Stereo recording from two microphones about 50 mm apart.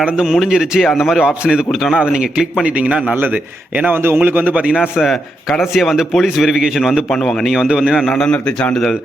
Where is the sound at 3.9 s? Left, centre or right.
Right.